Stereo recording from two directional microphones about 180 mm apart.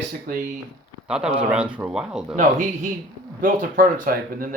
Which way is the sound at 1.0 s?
5° right (ahead or behind).